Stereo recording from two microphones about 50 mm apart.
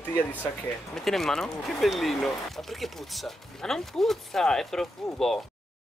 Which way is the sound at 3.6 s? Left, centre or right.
Centre.